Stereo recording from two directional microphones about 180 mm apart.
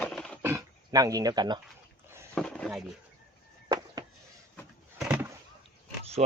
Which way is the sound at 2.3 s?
5° left (ahead or behind).